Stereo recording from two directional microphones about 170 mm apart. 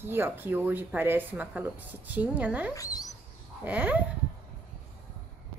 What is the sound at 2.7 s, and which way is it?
Speech, 20° left (ahead or behind).